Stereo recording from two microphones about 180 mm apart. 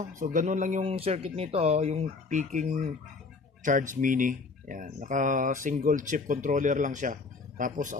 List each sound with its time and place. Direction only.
0.0 s speech: 50° right (ahead or behind)